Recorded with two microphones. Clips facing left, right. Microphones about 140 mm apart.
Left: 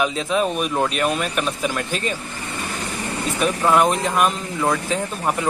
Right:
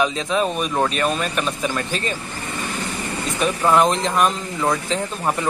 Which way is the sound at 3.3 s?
5° left (ahead or behind).